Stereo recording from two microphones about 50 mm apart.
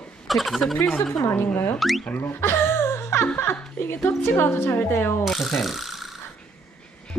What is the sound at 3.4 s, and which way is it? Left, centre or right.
A woman's voice, left.